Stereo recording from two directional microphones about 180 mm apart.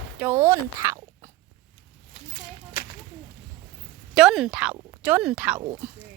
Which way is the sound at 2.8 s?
55° left (ahead or behind).